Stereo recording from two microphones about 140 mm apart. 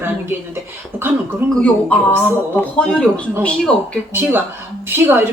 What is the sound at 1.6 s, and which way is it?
Speech, 10° left (ahead or behind).